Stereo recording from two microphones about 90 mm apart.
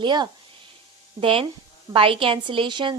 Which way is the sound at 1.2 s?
80° right.